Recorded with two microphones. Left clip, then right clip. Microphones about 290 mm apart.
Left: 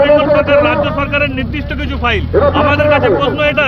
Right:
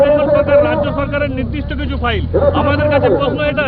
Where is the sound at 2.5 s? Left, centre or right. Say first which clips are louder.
Left 3 dB; centre.